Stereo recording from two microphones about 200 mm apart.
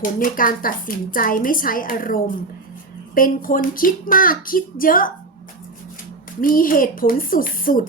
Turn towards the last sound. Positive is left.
turn(degrees=45)  # may be behind; listen again after turning